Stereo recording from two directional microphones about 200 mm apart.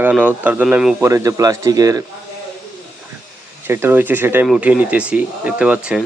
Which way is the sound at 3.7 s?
10° right (ahead or behind).